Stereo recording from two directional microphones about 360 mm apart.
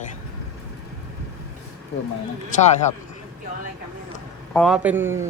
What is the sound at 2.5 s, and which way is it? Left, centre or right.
Speech, centre.